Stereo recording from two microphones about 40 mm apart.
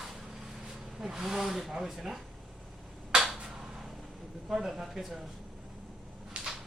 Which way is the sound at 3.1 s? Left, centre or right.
Right.